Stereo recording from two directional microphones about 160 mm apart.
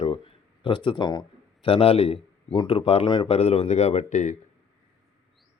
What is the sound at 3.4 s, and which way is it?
Speech, 40° left (ahead or behind).